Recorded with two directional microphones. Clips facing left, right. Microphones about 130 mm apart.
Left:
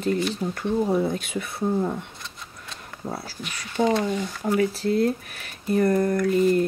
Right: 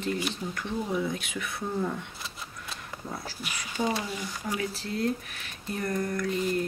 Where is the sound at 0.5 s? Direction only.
40° left (ahead or behind).